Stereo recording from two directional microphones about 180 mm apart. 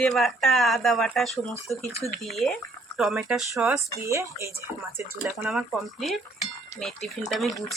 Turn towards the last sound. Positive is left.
turn(degrees=0)  # may be behind; listen again after turning